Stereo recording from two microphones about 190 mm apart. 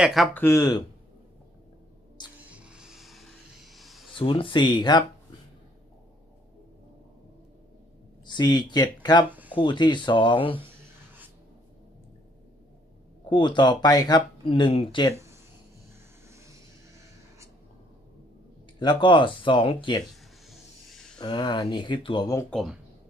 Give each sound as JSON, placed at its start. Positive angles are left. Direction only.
{"t": 0.0, "sound": "speech", "side_deg": 0}
{"t": 0.3, "sound": "speech", "side_deg": 15}
{"t": 2.5, "sound": "music", "side_deg": -5}
{"t": 4.2, "sound": "speech", "side_deg": 25}
{"t": 8.3, "sound": "speech", "side_deg": 20}
{"t": 9.3, "sound": "a sound", "side_deg": -10}
{"t": 9.6, "sound": "speech", "side_deg": 25}
{"t": 13.3, "sound": "speech", "side_deg": 25}
{"t": 15.1, "sound": "a sound", "side_deg": -15}
{"t": 18.8, "sound": "speech", "side_deg": 25}
{"t": 20.5, "sound": "a sound", "side_deg": 0}
{"t": 21.2, "sound": "speech", "side_deg": 25}
{"t": 22.4, "sound": "speech", "side_deg": 0}